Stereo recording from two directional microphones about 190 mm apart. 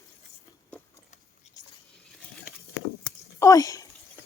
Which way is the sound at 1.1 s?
40° left (ahead or behind).